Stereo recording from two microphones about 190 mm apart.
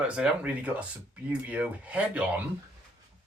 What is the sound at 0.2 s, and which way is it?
Speech, 5° right (ahead or behind).